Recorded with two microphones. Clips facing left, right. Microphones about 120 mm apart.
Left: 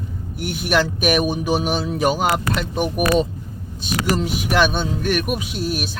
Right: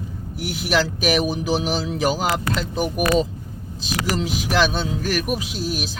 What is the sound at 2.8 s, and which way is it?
Vehicle, centre (ahead or behind).